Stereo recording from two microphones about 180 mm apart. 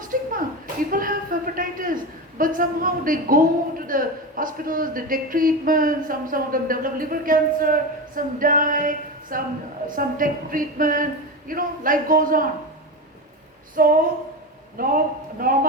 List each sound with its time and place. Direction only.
0.1 s a sound: 50° right (ahead or behind)
2.4 s a woman's voice: 50° right (ahead or behind)
13.7 s a woman's voice: 50° right (ahead or behind)